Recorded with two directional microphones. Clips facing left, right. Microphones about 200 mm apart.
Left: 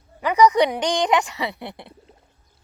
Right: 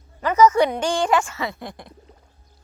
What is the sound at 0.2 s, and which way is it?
A woman's voice, 15° left (ahead or behind).